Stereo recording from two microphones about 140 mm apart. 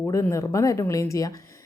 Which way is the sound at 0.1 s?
20° left (ahead or behind).